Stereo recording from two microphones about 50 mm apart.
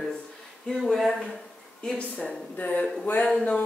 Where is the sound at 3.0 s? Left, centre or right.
Left.